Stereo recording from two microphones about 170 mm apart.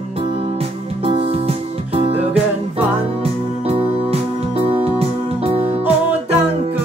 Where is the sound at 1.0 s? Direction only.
35° right (ahead or behind).